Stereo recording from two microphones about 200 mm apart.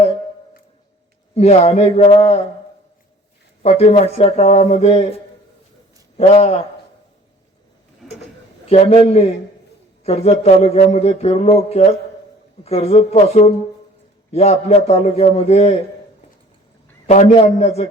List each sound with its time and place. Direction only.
1.4 s speech: 30° left (ahead or behind)
3.6 s speech: 30° left (ahead or behind)
8.6 s speech: 30° left (ahead or behind)
17.1 s speech: 35° left (ahead or behind)